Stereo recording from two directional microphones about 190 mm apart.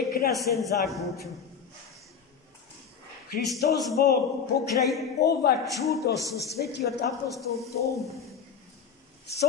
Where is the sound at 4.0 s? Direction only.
55° left (ahead or behind).